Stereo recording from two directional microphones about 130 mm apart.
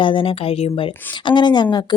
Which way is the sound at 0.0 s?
40° left (ahead or behind).